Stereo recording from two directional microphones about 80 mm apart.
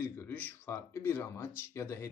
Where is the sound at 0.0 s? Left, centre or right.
Left.